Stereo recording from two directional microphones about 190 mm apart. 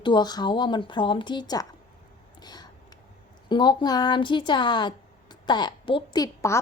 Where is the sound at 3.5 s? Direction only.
25° left (ahead or behind).